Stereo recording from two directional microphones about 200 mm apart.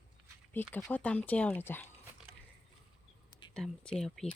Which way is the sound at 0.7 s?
10° left (ahead or behind).